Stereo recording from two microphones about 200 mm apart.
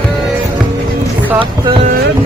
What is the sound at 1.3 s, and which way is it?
Boat, 25° right (ahead or behind).